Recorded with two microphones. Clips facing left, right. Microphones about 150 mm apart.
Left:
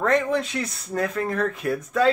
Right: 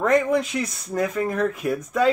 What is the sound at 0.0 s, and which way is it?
Speech, 10° right (ahead or behind).